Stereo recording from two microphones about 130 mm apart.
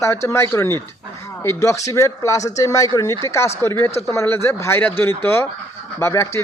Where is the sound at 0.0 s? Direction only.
20° left (ahead or behind).